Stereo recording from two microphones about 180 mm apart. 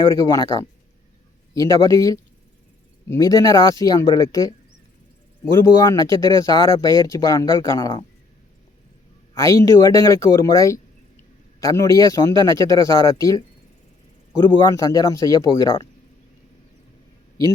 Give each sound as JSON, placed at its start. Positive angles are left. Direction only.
{"t": 0.1, "sound": "speech", "side_deg": 20}
{"t": 1.5, "sound": "speech", "side_deg": 20}
{"t": 5.5, "sound": "speech", "side_deg": 20}
{"t": 9.3, "sound": "speech", "side_deg": 15}